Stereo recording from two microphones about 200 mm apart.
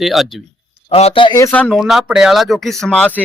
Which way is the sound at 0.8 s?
30° left (ahead or behind).